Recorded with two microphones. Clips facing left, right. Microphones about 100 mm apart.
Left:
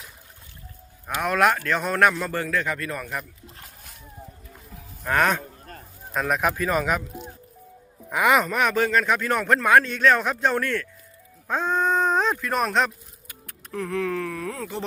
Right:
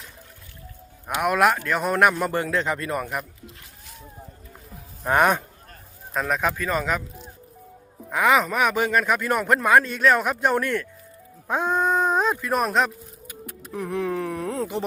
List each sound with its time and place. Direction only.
1.1 s speech: 5° right (ahead or behind)
5.0 s speech: 15° right (ahead or behind)
6.1 s speech: 5° left (ahead or behind)
8.4 s speech: 10° right (ahead or behind)